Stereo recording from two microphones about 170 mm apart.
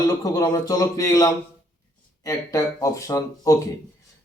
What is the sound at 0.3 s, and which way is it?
Speech, 20° left (ahead or behind).